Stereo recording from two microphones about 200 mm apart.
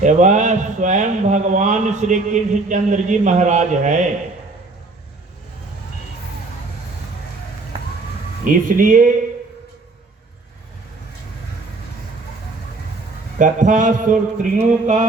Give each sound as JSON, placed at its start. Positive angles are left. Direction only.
{"t": 0.0, "sound": "a man's voice", "side_deg": -40}
{"t": 8.4, "sound": "speech", "side_deg": -45}
{"t": 13.4, "sound": "a man's voice", "side_deg": -40}